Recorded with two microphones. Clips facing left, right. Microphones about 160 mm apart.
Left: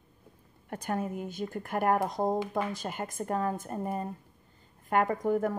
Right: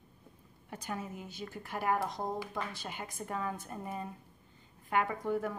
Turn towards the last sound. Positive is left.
turn(degrees=45)  # may be behind; listen again after turning